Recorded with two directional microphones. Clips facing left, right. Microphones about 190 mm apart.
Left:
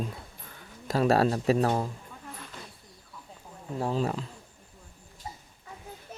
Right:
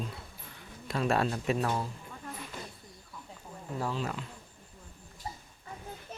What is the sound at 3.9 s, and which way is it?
Speech, 35° left (ahead or behind).